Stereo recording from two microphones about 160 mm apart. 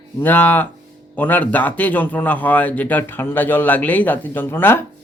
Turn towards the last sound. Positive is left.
turn(degrees=15)  # may be behind; listen again after turning